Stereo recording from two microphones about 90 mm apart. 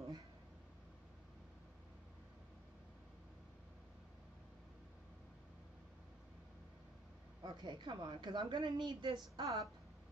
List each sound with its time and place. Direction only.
7.4 s a woman's voice: 55° right (ahead or behind)
9.4 s a woman's voice: 40° right (ahead or behind)